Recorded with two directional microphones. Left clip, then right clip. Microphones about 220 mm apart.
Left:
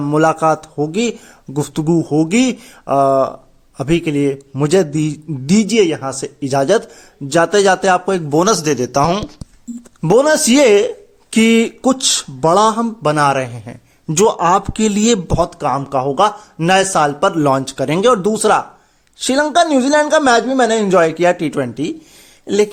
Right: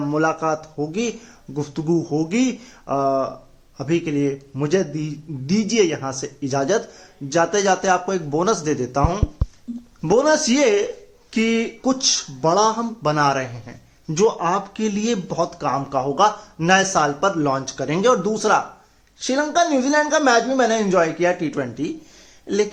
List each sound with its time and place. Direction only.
0.1 s speech: 50° left (ahead or behind)